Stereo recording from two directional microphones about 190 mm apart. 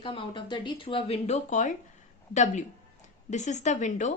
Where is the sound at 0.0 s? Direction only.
25° left (ahead or behind).